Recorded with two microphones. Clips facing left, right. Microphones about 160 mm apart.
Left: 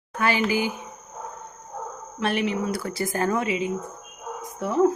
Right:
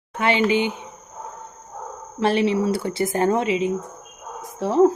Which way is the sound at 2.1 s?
30° right (ahead or behind).